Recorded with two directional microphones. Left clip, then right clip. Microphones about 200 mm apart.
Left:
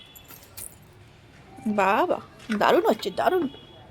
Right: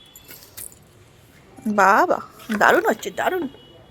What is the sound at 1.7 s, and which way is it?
Speech, 15° right (ahead or behind).